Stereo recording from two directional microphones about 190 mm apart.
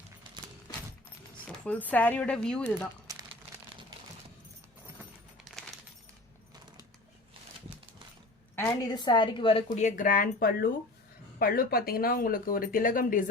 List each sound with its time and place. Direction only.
1.5 s speech: 5° left (ahead or behind)
3.1 s crumpling: 20° right (ahead or behind)
8.5 s a woman's voice: 15° left (ahead or behind)
9.6 s speech: 40° left (ahead or behind)